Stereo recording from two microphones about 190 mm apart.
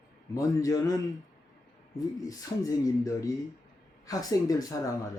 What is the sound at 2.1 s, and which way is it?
Speech, 20° left (ahead or behind).